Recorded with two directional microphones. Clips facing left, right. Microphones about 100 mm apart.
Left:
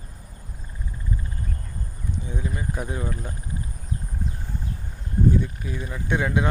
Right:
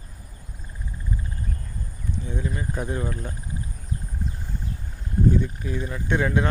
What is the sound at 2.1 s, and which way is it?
Speech, 15° left (ahead or behind).